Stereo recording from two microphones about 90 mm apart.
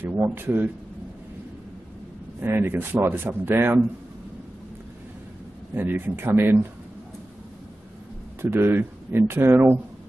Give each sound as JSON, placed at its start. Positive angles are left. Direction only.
{"t": 0.0, "sound": "speech", "side_deg": -25}
{"t": 2.4, "sound": "speech", "side_deg": -25}
{"t": 5.8, "sound": "speech", "side_deg": -25}
{"t": 8.4, "sound": "speech", "side_deg": -25}